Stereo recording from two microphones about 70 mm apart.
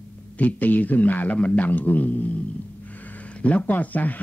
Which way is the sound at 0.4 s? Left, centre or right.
Left.